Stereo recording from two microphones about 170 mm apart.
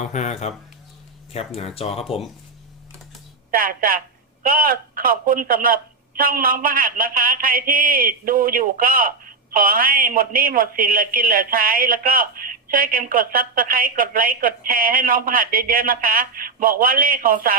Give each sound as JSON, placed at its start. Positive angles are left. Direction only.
{"t": 0.0, "sound": "speech", "side_deg": 45}
{"t": 3.5, "sound": "speech", "side_deg": -55}